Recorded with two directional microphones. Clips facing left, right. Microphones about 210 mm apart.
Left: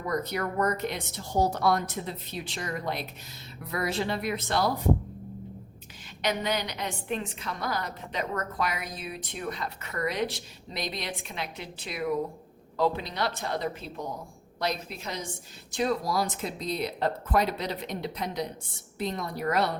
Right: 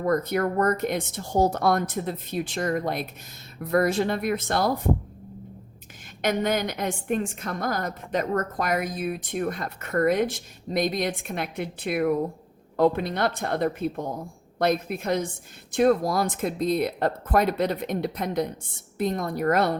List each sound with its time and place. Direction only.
0.0 s a woman's voice: 50° right (ahead or behind)
6.2 s a woman's voice: 50° right (ahead or behind)